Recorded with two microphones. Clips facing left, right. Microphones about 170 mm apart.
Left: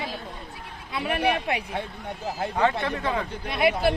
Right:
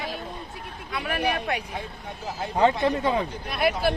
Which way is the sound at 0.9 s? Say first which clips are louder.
Left 2 dB; 25° left (ahead or behind).